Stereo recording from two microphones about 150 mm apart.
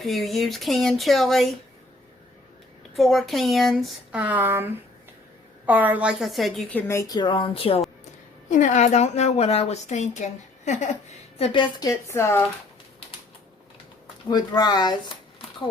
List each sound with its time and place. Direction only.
0.0 s speech: centre (ahead or behind)
2.9 s a woman's voice: centre (ahead or behind); by 7.8 s 40° left (ahead or behind)
8.4 s a woman's voice: 55° left (ahead or behind)
11.3 s a woman's voice: 35° left (ahead or behind)
11.9 s a woman's voice: 20° left (ahead or behind)
14.3 s speech: 25° left (ahead or behind)